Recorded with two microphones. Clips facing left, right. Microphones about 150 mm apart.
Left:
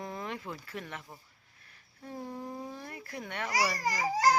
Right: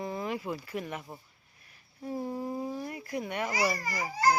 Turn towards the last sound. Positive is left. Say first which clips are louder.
# left 1 dB
turn(degrees=90)